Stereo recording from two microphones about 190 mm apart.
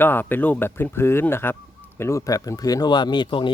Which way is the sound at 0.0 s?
10° left (ahead or behind).